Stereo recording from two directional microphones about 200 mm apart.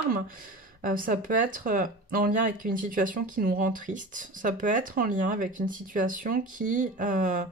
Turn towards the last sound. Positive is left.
turn(degrees=-40)  # may be behind; listen again after turning